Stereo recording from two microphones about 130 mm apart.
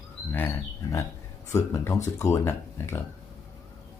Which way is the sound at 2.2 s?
20° left (ahead or behind).